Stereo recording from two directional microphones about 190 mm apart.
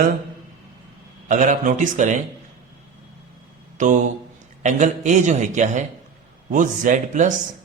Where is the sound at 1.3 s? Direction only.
40° right (ahead or behind).